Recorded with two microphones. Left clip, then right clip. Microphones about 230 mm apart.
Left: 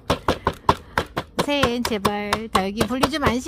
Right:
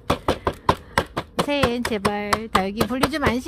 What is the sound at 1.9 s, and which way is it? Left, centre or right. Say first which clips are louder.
Speech: even; centre.